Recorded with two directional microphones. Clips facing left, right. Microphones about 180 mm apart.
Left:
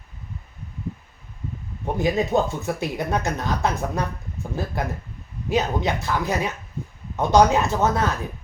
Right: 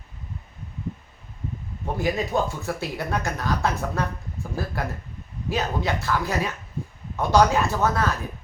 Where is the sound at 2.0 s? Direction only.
20° left (ahead or behind).